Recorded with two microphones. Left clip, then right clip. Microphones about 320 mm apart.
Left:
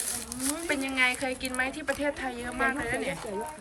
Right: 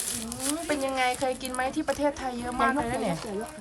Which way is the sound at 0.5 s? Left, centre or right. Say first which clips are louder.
Right 1 dB; centre.